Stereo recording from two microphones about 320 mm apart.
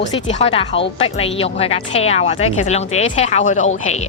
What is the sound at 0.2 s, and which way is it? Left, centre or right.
A woman's voice, centre.